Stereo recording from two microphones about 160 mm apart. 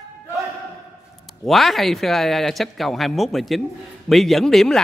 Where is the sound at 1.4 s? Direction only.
Centre (ahead or behind).